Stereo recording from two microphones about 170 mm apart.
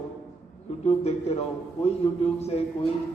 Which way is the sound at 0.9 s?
40° left (ahead or behind).